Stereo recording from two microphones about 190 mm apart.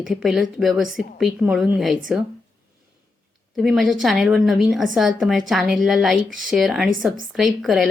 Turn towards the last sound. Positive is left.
turn(degrees=0)  # may be behind; listen again after turning